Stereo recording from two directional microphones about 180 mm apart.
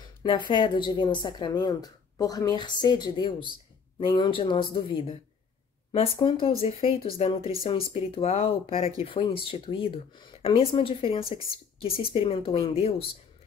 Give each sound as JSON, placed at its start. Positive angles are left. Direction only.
{"t": 0.5, "sound": "a woman's voice", "side_deg": 25}